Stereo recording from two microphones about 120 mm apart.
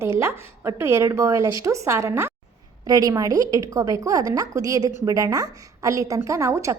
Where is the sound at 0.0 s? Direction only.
25° right (ahead or behind).